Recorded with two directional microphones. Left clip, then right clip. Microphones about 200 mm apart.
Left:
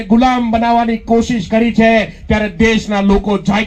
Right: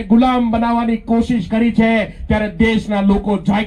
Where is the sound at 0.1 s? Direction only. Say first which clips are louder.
Left 2 dB; 45° left (ahead or behind).